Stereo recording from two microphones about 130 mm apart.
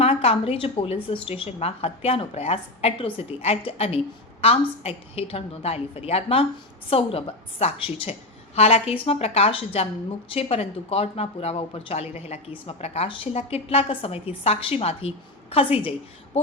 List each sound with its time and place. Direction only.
0.0 s a woman's voice: 50° left (ahead or behind)